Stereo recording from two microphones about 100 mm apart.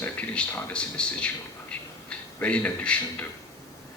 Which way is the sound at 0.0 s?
15° left (ahead or behind).